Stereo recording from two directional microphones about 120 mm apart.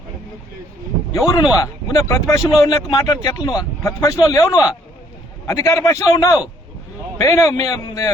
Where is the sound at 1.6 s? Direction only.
25° left (ahead or behind).